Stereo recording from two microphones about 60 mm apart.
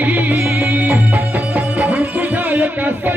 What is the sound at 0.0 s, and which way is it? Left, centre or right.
Music, right.